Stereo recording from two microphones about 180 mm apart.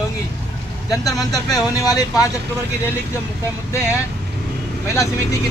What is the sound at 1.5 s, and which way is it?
Speech, 20° left (ahead or behind).